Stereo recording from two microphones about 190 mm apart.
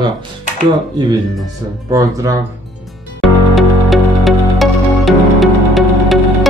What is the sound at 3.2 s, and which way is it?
Music, centre (ahead or behind).